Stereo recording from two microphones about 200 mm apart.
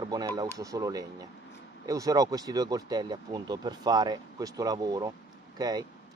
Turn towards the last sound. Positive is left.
turn(degrees=-20)  # may be behind; listen again after turning